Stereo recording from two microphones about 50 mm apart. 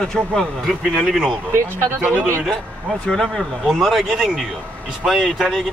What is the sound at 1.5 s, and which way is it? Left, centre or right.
Speech, right.